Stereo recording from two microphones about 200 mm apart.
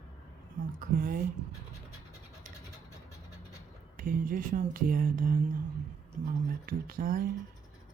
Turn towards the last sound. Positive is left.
turn(degrees=-45)  # may be behind; listen again after turning